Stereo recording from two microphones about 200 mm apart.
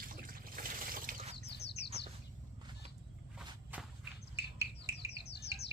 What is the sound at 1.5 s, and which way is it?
Bird, 55° left (ahead or behind).